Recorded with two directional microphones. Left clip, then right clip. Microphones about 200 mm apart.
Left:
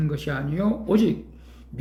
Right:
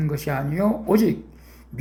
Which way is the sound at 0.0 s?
5° right (ahead or behind).